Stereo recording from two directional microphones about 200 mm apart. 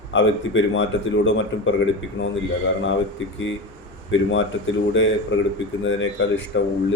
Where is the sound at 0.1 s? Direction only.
70° left (ahead or behind).